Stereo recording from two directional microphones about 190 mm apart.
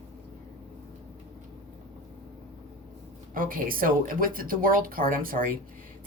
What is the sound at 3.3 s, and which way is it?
A woman's voice, 45° right (ahead or behind).